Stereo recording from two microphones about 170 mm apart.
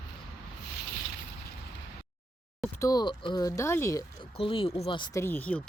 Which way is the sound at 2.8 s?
25° left (ahead or behind).